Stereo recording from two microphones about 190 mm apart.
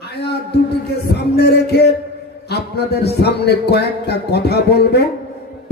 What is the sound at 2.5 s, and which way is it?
A man's voice, 60° left (ahead or behind).